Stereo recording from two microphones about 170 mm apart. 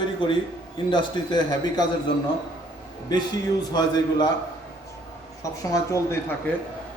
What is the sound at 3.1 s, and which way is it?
A man's voice, 25° left (ahead or behind).